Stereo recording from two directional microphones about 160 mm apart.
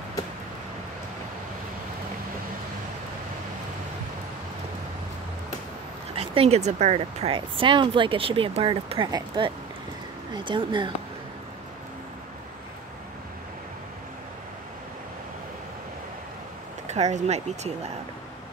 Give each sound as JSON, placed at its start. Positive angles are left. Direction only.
{"t": 6.1, "sound": "speech", "side_deg": -40}
{"t": 16.8, "sound": "speech", "side_deg": -45}